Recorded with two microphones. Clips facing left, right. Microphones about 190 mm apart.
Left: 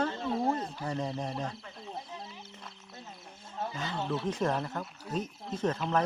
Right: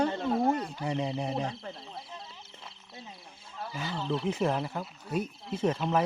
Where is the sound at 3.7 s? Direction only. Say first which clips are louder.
Right 3 dB; 10° right (ahead or behind).